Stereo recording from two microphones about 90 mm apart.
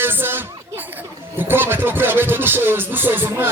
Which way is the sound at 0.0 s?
25° right (ahead or behind).